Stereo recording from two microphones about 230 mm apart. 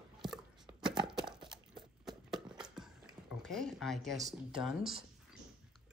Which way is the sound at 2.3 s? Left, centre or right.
Centre.